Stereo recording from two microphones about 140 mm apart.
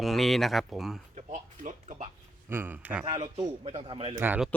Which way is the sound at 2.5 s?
15° right (ahead or behind).